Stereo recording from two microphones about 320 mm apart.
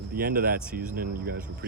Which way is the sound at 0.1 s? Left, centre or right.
Right.